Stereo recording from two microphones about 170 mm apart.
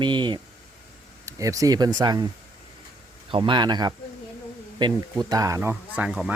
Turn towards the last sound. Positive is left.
turn(degrees=-5)  # may be behind; listen again after turning